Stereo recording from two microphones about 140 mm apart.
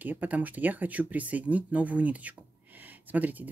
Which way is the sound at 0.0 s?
10° right (ahead or behind).